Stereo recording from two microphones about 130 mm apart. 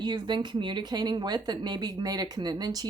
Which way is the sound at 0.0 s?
35° right (ahead or behind).